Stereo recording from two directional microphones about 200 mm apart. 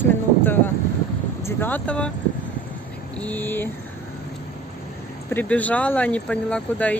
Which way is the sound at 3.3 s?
10° left (ahead or behind).